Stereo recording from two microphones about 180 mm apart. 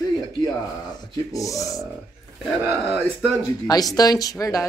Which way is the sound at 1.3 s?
20° left (ahead or behind).